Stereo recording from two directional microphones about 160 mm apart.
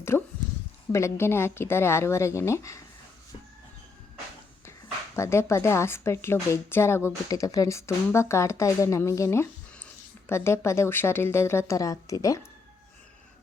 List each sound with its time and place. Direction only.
0.1 s speech: 15° left (ahead or behind)
5.1 s speech: 15° left (ahead or behind)